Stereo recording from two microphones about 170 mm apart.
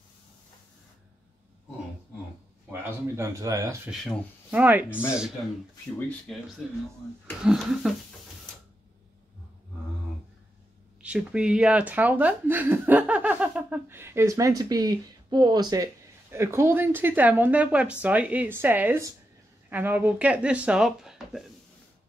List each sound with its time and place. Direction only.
2.7 s speech: 20° right (ahead or behind)
3.9 s speech: centre (ahead or behind)
4.5 s speech: 10° right (ahead or behind)
5.9 s speech: 10° left (ahead or behind)
7.4 s speech: centre (ahead or behind)
11.0 s speech: 5° right (ahead or behind)